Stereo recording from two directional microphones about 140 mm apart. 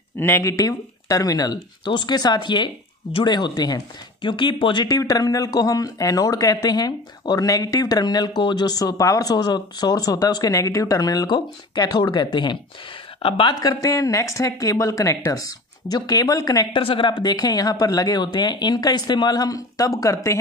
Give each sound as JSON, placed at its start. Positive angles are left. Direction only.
{"t": 0.2, "sound": "speech", "side_deg": 20}
{"t": 16.7, "sound": "speech", "side_deg": 35}